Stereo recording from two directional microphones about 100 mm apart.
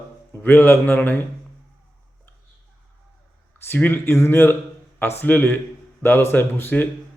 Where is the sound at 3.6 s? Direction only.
20° left (ahead or behind).